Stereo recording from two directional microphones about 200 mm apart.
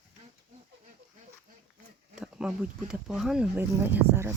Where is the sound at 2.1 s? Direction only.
5° right (ahead or behind).